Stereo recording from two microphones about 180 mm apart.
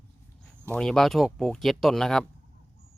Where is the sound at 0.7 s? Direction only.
5° left (ahead or behind).